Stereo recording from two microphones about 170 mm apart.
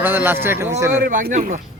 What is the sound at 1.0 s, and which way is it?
Speech, 50° right (ahead or behind).